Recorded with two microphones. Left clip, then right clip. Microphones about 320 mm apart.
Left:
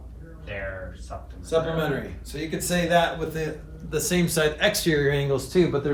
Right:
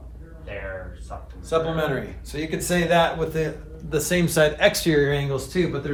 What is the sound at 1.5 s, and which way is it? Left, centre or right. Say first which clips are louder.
Speech: right 1 dB; centre.